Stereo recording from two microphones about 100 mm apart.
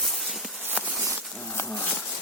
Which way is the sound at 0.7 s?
15° right (ahead or behind).